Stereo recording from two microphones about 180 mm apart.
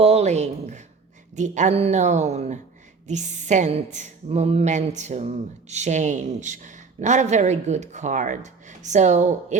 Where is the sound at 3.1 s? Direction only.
40° right (ahead or behind).